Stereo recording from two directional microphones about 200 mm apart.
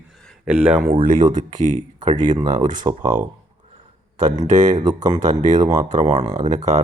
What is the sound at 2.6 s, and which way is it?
Speech, 40° right (ahead or behind).